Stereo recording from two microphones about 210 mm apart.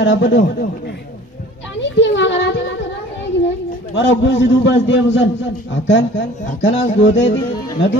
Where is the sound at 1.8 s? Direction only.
60° left (ahead or behind).